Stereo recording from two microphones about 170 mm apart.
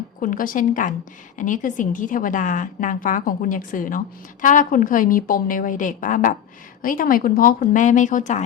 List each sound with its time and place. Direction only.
0.2 s a woman's voice: 55° left (ahead or behind)